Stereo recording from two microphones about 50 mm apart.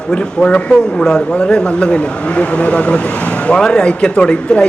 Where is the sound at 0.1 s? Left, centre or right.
Centre.